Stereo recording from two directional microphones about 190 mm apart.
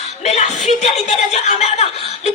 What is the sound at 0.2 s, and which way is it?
Speech, 35° left (ahead or behind).